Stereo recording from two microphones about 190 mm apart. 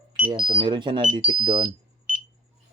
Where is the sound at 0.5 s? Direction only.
25° right (ahead or behind).